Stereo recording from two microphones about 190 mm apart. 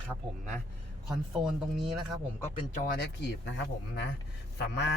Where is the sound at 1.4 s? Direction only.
Centre (ahead or behind).